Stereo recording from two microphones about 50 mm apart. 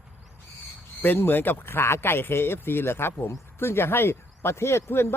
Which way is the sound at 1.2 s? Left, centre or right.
Left.